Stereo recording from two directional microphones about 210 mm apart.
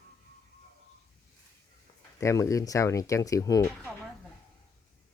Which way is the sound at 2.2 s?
15° left (ahead or behind).